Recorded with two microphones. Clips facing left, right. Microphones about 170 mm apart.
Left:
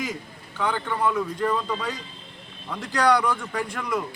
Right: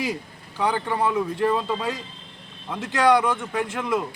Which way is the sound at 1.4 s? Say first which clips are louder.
Right 3 dB; 25° right (ahead or behind).